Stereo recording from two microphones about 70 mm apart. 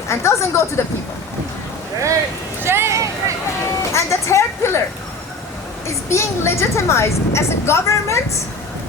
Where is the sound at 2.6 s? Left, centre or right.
Right.